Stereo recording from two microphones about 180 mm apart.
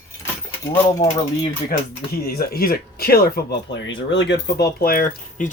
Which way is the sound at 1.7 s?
55° left (ahead or behind).